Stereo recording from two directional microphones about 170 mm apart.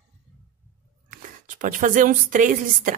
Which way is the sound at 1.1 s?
50° right (ahead or behind).